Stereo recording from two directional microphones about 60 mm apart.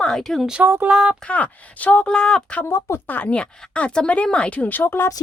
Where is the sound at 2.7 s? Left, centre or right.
Left.